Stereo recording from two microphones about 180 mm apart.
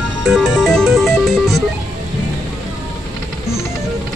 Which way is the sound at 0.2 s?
Centre (ahead or behind).